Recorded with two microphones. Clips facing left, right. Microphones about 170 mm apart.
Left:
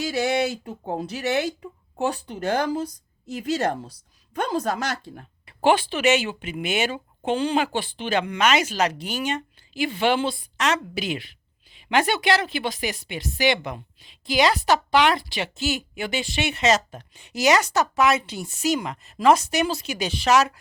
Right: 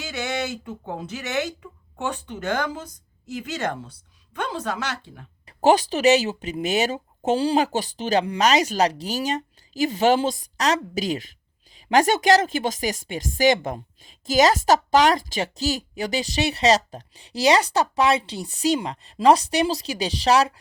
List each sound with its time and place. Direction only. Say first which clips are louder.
0.0 s speech: left 5 dB; 35° left (ahead or behind)
5.5 s a woman's voice: right 2 dB; 40° right (ahead or behind)